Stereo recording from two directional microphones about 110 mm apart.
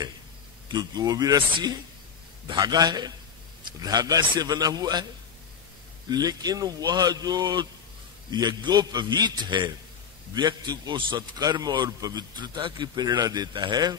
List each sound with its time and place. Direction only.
0.7 s a man's voice: 40° right (ahead or behind)
6.0 s a man's voice: 35° right (ahead or behind)